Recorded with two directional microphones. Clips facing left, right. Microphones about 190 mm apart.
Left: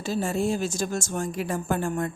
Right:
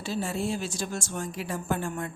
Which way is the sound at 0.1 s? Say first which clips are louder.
Left 4 dB; 45° left (ahead or behind).